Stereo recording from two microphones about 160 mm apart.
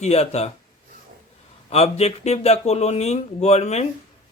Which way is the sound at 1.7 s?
40° left (ahead or behind).